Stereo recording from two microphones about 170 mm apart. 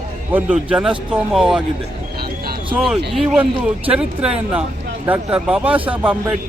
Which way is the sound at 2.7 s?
5° right (ahead or behind).